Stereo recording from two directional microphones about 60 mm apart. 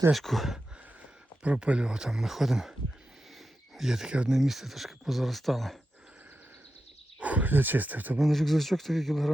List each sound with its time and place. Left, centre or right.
0.1 s speech: centre
1.5 s speech: centre
3.8 s speech: centre
4.1 s speech: centre
4.4 s speech: centre
7.2 s speech: right
8.2 s speech: centre